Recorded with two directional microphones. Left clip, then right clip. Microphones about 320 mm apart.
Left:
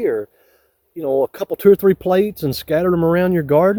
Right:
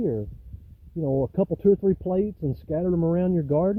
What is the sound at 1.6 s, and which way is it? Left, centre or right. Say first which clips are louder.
Speech: left 10 dB; centre.